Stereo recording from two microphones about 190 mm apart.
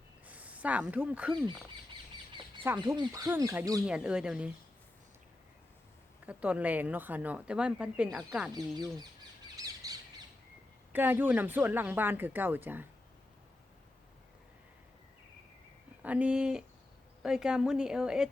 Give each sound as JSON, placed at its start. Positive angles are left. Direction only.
{"t": 0.3, "sound": "speech", "side_deg": -5}
{"t": 1.3, "sound": "speech", "side_deg": -25}
{"t": 3.8, "sound": "a woman's voice", "side_deg": -5}
{"t": 6.2, "sound": "speech", "side_deg": -5}
{"t": 8.5, "sound": "speech", "side_deg": -20}
{"t": 9.6, "sound": "bird", "side_deg": -20}
{"t": 10.9, "sound": "speech", "side_deg": -10}
{"t": 16.0, "sound": "a woman's voice", "side_deg": -5}